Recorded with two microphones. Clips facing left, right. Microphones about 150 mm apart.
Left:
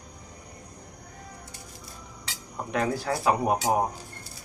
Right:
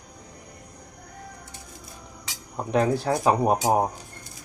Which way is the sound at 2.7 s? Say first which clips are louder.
Right 5 dB; 25° right (ahead or behind).